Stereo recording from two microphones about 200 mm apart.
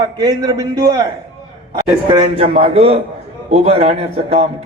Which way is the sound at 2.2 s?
30° right (ahead or behind).